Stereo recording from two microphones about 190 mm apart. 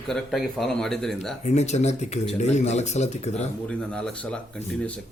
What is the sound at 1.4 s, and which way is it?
Speech, 35° left (ahead or behind).